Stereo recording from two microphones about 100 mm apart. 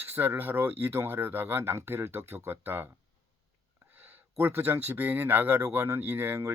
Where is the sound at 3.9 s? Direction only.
20° right (ahead or behind).